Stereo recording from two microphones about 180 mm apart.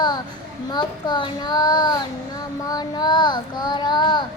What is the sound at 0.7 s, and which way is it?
A child's voice, 25° left (ahead or behind).